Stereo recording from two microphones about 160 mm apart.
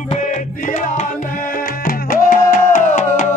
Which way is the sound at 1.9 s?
60° left (ahead or behind).